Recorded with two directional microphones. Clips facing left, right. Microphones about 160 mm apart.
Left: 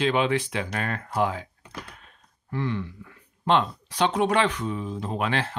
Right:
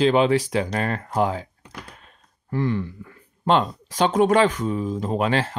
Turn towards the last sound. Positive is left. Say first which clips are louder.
# right 5 dB
turn(degrees=-35)  # may be behind; listen again after turning